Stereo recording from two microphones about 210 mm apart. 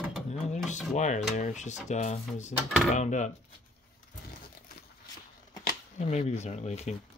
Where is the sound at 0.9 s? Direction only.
35° left (ahead or behind).